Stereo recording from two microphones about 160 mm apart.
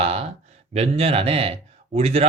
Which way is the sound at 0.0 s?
35° right (ahead or behind).